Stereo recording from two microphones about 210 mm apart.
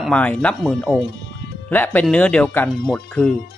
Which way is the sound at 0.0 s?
5° left (ahead or behind).